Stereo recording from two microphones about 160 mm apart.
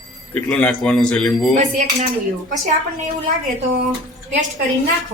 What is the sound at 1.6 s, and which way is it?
Dishes, 50° right (ahead or behind).